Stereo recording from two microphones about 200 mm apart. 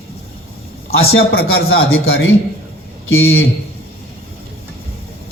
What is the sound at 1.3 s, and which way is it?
Speech, 50° left (ahead or behind).